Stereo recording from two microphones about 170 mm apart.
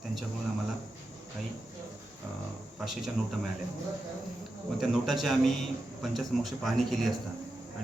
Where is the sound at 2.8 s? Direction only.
Centre (ahead or behind).